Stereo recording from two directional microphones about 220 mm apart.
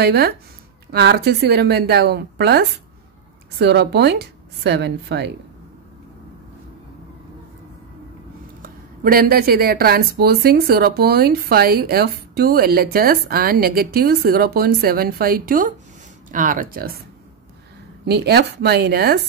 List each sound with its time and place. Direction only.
0.0 s speech: 45° right (ahead or behind)
8.6 s speech: 40° right (ahead or behind)
18.0 s speech: 45° right (ahead or behind)